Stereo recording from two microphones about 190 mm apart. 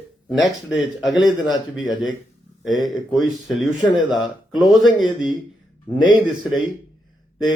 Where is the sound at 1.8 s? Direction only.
20° left (ahead or behind).